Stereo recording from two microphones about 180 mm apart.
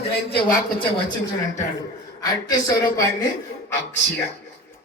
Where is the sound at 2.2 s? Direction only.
20° left (ahead or behind).